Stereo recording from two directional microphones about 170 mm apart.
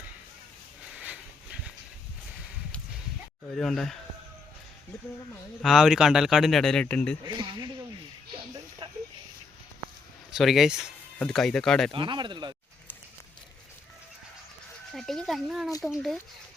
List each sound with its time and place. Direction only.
0.9 s dog: 5° right (ahead or behind)
3.6 s a man's voice: centre (ahead or behind)
5.6 s a man's voice: centre (ahead or behind)
7.3 s speech: 25° right (ahead or behind)
8.8 s a sound: 35° right (ahead or behind)
10.3 s a man's voice: centre (ahead or behind)
11.9 s speech: 30° right (ahead or behind)
14.9 s a man's voice: centre (ahead or behind)